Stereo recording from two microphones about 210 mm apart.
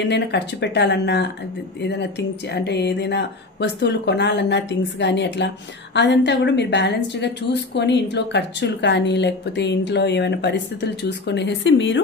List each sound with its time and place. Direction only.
0.0 s a woman's voice: 55° left (ahead or behind)